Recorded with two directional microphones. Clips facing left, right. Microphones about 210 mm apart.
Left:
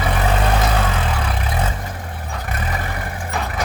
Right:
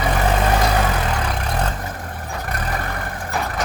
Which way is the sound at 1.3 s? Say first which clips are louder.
Even; 5° left (ahead or behind).